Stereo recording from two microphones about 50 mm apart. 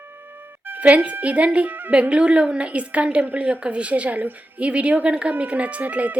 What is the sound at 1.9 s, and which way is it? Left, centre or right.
Speech, right.